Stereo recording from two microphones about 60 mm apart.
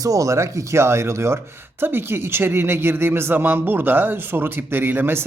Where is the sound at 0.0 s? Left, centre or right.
Right.